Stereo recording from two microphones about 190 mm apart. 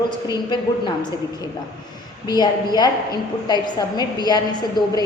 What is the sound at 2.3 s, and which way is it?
A woman's voice, 20° left (ahead or behind).